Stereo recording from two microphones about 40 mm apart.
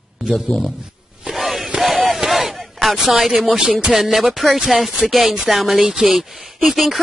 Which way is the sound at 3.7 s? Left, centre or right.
Right.